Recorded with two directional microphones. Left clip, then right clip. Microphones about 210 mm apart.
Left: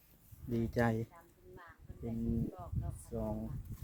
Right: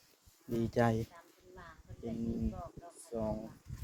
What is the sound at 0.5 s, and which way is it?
Speech, 5° right (ahead or behind).